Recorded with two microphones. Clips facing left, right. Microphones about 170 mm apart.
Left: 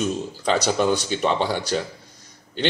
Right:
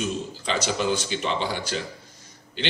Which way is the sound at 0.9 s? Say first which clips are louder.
Left 4 dB; 45° left (ahead or behind).